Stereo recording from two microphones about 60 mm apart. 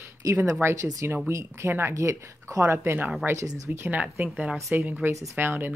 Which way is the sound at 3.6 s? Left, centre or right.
Right.